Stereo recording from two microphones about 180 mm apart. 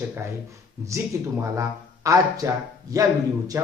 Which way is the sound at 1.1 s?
15° right (ahead or behind).